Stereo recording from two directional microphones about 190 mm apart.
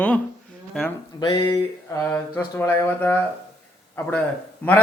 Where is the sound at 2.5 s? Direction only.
10° left (ahead or behind).